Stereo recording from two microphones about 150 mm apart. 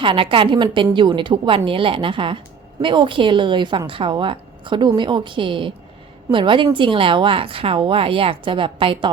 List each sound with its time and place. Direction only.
0.0 s a woman's voice: 35° right (ahead or behind)